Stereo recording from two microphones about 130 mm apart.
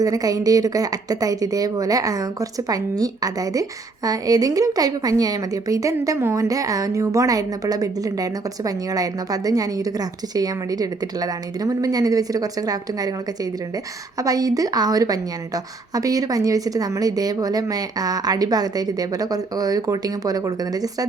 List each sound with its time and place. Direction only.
0.0 s a woman's voice: 25° right (ahead or behind)